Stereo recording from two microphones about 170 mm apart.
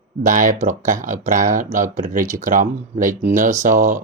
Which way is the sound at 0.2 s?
50° right (ahead or behind).